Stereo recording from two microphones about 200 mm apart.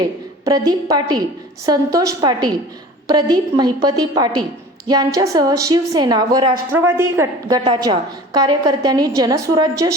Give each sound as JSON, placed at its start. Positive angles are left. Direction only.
{"t": 0.0, "sound": "a woman's voice", "side_deg": -20}